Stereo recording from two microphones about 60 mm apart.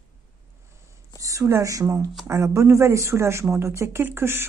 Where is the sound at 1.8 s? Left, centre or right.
Right.